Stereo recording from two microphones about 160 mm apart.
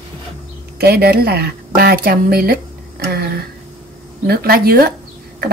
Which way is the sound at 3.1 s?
80° right.